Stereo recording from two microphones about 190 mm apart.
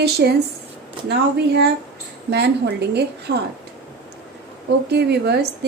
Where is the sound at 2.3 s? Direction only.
60° right (ahead or behind).